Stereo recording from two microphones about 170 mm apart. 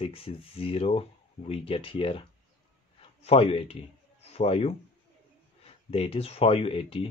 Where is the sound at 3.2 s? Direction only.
35° left (ahead or behind).